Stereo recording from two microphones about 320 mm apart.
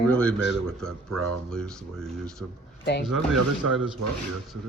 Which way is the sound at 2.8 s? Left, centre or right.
Left.